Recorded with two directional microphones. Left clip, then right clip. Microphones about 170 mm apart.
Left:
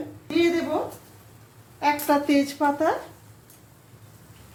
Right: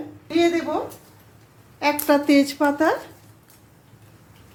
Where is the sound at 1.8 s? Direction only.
35° right (ahead or behind).